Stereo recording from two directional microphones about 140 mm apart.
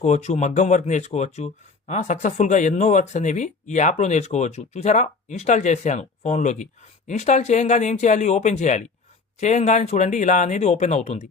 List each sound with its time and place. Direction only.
0.0 s speech: 55° left (ahead or behind)